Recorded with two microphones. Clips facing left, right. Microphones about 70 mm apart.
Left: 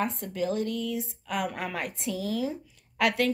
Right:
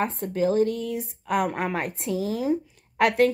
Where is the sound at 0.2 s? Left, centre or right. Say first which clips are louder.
Right 7 dB; right.